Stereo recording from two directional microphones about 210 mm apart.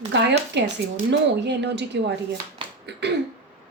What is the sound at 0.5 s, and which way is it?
A woman's voice, 55° right (ahead or behind).